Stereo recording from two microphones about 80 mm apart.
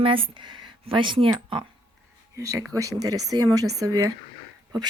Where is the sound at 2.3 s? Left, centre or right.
Right.